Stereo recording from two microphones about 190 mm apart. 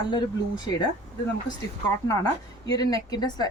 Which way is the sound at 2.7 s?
20° left (ahead or behind).